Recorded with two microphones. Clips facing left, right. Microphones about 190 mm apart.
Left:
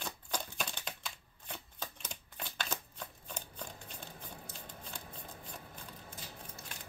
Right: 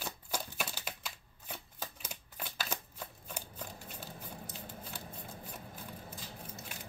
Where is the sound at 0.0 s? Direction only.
5° right (ahead or behind).